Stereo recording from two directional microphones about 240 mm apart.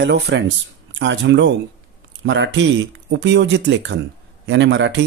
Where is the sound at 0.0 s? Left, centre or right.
Right.